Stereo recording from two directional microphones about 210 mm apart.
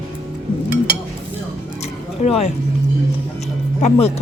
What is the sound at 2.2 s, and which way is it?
Speech, 35° left (ahead or behind).